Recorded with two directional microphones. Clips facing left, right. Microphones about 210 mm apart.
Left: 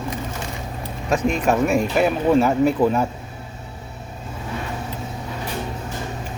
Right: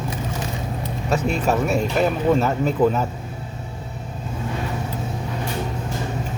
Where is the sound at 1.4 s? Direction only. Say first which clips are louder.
Left 2 dB; 10° left (ahead or behind).